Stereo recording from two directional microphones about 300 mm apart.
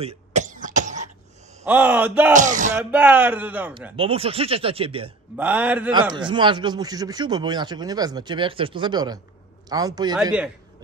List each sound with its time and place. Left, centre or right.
0.0 s cough: right
1.6 s speech: centre
2.3 s speech: right
2.7 s speech: centre
3.9 s speech: centre
5.4 s speech: centre